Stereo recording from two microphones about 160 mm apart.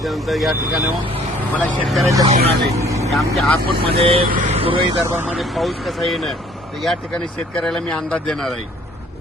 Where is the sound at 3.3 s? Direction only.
Centre (ahead or behind).